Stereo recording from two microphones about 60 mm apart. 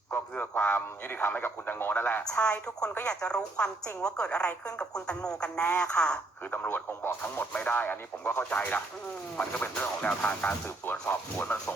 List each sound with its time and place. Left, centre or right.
0.1 s a man's voice: left
2.4 s speech: centre
6.5 s speech: left
11.1 s speech: left